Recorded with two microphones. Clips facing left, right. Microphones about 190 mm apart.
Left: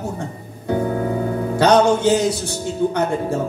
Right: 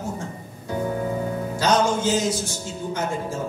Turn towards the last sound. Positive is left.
turn(degrees=65)  # may be behind; listen again after turning